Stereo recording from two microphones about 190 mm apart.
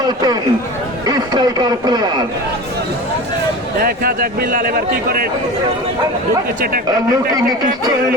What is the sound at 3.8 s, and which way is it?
A man's voice, 50° right (ahead or behind).